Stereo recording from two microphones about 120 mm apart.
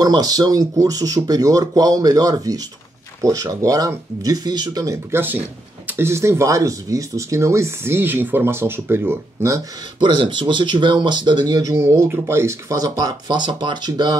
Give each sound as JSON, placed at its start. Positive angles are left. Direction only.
{"t": 0.0, "sound": "speech", "side_deg": -30}
{"t": 9.9, "sound": "speech", "side_deg": -40}